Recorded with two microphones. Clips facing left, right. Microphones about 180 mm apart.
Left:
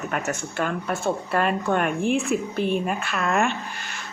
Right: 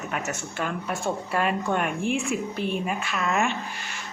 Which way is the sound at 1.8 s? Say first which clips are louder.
Left 4 dB; 40° left (ahead or behind).